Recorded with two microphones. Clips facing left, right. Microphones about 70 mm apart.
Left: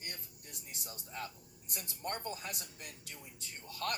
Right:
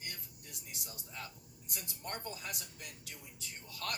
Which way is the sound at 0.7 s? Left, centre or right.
Left.